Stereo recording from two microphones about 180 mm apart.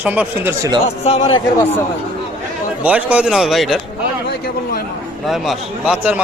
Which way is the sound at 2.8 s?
5° right (ahead or behind).